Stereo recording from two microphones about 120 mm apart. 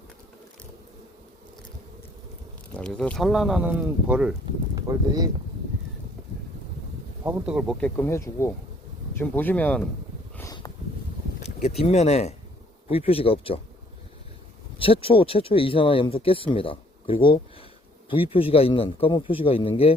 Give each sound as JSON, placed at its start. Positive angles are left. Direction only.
{"t": 2.7, "sound": "speech", "side_deg": 10}
{"t": 4.7, "sound": "speech", "side_deg": -30}
{"t": 7.3, "sound": "speech", "side_deg": -5}
{"t": 7.9, "sound": "speech", "side_deg": 20}
{"t": 10.4, "sound": "a sound", "side_deg": 35}
{"t": 11.8, "sound": "speech", "side_deg": 65}
{"t": 12.9, "sound": "a man's voice", "side_deg": 55}
{"t": 14.8, "sound": "a man's voice", "side_deg": 50}